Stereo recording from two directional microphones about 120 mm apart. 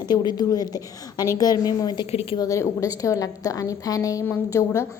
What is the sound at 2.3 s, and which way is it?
A woman's voice, 30° left (ahead or behind).